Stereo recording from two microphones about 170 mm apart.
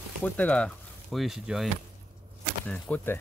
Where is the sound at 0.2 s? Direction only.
10° left (ahead or behind).